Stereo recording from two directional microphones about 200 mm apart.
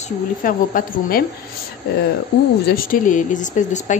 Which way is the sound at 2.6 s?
45° left (ahead or behind).